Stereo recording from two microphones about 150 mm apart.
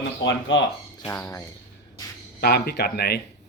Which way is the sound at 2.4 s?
90° left.